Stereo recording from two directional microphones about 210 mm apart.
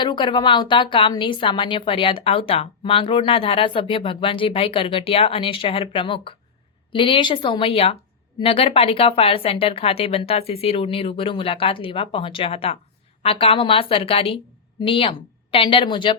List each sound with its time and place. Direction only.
0.0 s a woman's voice: 20° left (ahead or behind)